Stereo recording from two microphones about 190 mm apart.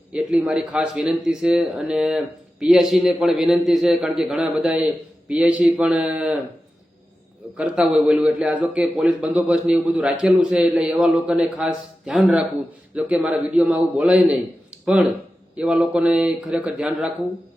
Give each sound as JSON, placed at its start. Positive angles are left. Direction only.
{"t": 0.1, "sound": "speech", "side_deg": -5}
{"t": 7.5, "sound": "speech", "side_deg": -5}